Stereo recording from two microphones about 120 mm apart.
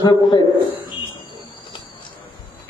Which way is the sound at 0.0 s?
35° left (ahead or behind).